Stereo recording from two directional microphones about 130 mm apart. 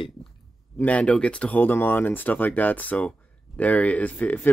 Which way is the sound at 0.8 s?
10° left (ahead or behind).